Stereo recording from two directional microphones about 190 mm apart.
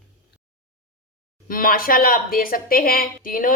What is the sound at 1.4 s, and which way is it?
Speech, 50° left (ahead or behind).